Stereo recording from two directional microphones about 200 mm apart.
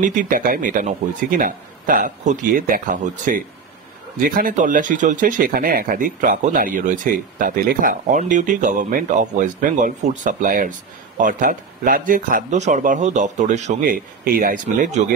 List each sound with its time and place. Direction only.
0.0 s speech: 40° right (ahead or behind)